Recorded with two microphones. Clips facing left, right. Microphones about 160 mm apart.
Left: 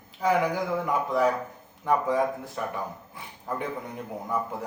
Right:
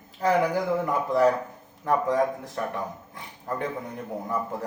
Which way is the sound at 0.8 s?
Centre (ahead or behind).